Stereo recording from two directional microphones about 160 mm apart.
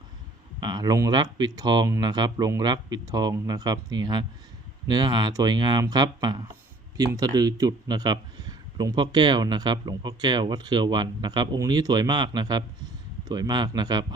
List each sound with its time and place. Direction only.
0.6 s a man's voice: 25° right (ahead or behind)